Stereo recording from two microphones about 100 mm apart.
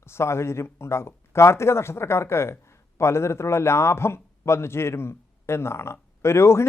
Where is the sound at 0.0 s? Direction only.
25° left (ahead or behind).